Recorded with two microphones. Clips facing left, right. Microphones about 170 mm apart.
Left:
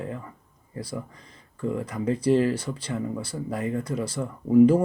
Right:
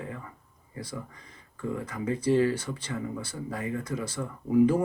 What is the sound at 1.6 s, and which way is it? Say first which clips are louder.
Speech: left 4 dB; 30° left (ahead or behind).